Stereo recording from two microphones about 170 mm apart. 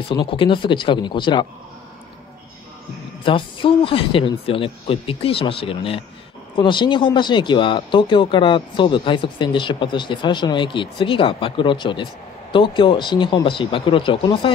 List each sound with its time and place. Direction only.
0.1 s speech: 30° left (ahead or behind)
3.3 s speech: 30° left (ahead or behind)